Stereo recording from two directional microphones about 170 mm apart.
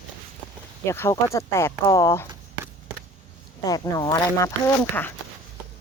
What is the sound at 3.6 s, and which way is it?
Speech, 20° left (ahead or behind).